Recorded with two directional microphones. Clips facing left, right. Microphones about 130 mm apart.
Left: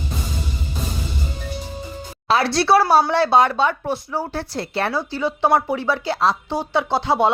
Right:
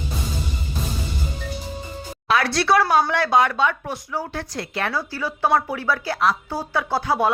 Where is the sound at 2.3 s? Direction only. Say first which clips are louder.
Left 3 dB; 30° left (ahead or behind).